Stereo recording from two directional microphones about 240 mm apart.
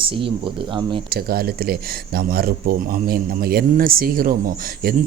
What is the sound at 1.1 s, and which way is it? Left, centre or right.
Speech, right.